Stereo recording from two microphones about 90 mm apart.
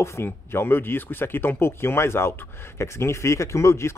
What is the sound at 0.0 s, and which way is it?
Speech, 30° left (ahead or behind).